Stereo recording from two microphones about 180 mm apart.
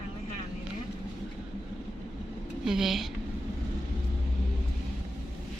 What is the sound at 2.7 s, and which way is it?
Speech, centre (ahead or behind).